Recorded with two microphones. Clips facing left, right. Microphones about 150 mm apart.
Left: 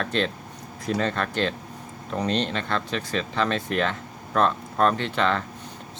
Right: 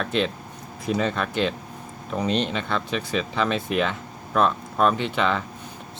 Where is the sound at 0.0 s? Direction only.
5° right (ahead or behind).